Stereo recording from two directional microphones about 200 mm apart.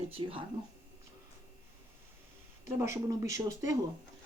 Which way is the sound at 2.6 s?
15° right (ahead or behind).